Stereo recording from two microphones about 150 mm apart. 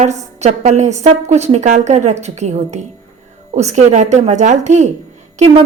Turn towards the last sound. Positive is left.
turn(degrees=-45)  # may be behind; listen again after turning